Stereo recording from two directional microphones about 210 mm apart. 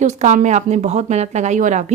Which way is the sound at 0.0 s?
35° right (ahead or behind).